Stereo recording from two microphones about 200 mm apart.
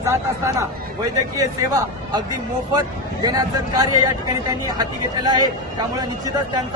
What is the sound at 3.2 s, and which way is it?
Speech, 20° right (ahead or behind).